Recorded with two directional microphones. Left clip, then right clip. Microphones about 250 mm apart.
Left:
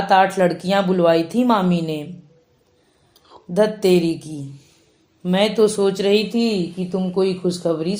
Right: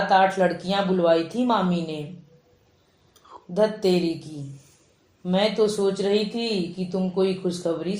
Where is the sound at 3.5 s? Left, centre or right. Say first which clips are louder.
Left 5 dB; left.